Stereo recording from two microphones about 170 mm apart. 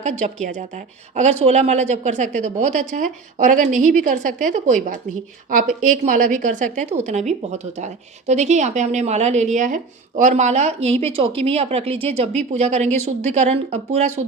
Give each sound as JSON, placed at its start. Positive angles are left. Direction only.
{"t": 0.0, "sound": "a woman's voice", "side_deg": -45}